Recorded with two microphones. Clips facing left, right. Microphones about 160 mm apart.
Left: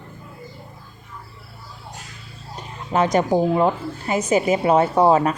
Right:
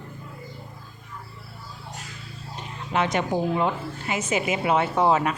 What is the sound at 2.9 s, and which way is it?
A woman's voice, 40° left (ahead or behind).